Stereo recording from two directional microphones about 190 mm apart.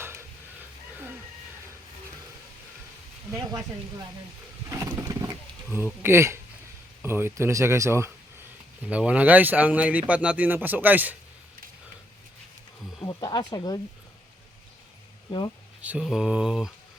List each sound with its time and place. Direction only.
0.0 s stir: 15° right (ahead or behind)
3.3 s speech: 15° right (ahead or behind)
4.7 s vehicle: 15° right (ahead or behind)
5.6 s speech: 10° right (ahead or behind)
13.0 s speech: 25° left (ahead or behind)
15.8 s mantra: 5° right (ahead or behind)